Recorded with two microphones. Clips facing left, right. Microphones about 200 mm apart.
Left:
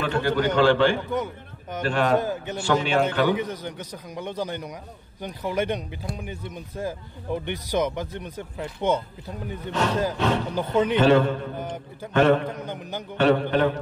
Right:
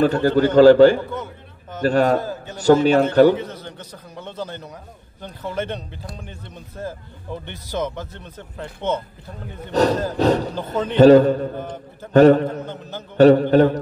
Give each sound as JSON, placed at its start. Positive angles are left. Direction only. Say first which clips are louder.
{"t": 0.0, "sound": "a man's voice", "louder": "right 7 dB", "side_deg": -40}
{"t": 1.1, "sound": "a sound", "louder": "left 3 dB", "side_deg": 15}
{"t": 1.8, "sound": "a man's voice", "louder": "right 6 dB", "side_deg": -40}
{"t": 2.1, "sound": "a man's voice", "louder": "left 1 dB", "side_deg": 20}
{"t": 2.5, "sound": "a man's voice", "louder": "right 9 dB", "side_deg": -40}
{"t": 3.3, "sound": "speech", "louder": "left 1 dB", "side_deg": 15}
{"t": 9.7, "sound": "a man's voice", "louder": "right 6 dB", "side_deg": -40}
{"t": 12.6, "sound": "speech", "louder": "even", "side_deg": 15}
{"t": 13.2, "sound": "a man's voice", "louder": "right 8 dB", "side_deg": -40}